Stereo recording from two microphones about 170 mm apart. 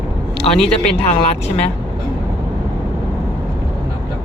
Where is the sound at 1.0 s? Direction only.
35° left (ahead or behind).